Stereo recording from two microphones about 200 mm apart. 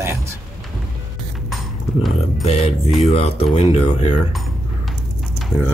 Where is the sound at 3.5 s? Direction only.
35° left (ahead or behind).